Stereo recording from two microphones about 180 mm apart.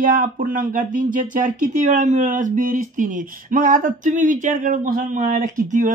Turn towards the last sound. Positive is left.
turn(degrees=-45)  # may be behind; listen again after turning